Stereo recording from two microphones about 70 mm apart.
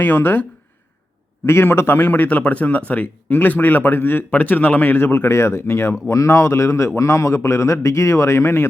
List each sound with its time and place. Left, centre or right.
0.0 s a man's voice: left
1.5 s a man's voice: left